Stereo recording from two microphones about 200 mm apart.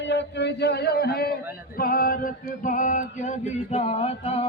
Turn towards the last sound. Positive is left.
turn(degrees=30)  # may be behind; listen again after turning